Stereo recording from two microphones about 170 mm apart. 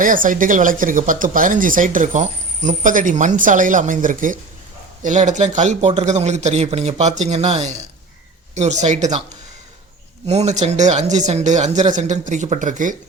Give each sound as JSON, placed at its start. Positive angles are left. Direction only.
{"t": 0.0, "sound": "speech", "side_deg": -50}
{"t": 10.2, "sound": "speech", "side_deg": -40}